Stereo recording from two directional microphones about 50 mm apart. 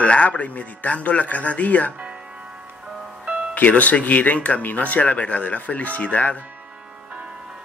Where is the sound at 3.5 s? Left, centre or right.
Left.